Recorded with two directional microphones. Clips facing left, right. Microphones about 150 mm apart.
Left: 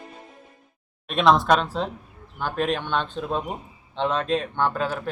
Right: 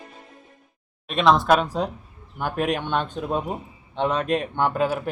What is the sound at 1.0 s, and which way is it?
Speech, centre (ahead or behind).